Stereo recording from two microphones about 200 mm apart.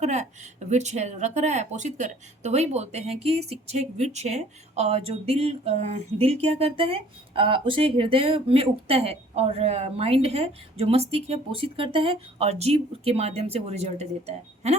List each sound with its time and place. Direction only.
0.0 s speech: 35° right (ahead or behind)